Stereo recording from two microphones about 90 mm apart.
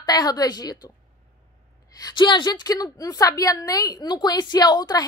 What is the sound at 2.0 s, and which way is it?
A woman's voice, 60° left (ahead or behind).